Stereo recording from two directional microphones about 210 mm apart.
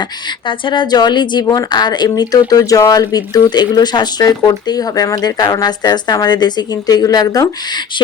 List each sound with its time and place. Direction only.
0.4 s a woman's voice: 25° left (ahead or behind)